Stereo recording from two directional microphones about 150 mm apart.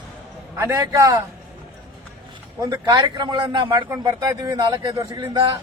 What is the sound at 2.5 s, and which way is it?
A man's voice, 25° right (ahead or behind).